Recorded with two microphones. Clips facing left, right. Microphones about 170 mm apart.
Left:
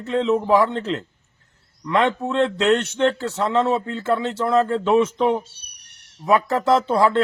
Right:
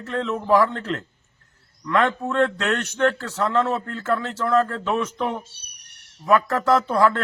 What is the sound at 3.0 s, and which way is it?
Speech, 25° left (ahead or behind).